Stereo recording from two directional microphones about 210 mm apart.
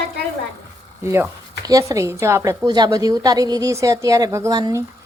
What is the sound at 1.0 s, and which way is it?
A woman's voice, 15° right (ahead or behind).